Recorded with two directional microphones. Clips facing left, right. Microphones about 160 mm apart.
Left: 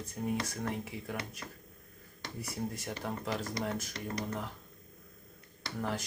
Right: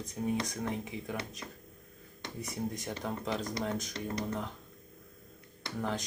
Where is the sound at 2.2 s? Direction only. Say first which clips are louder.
Right 1 dB; 20° right (ahead or behind).